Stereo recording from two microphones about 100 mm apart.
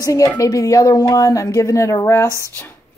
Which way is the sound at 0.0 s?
35° left (ahead or behind).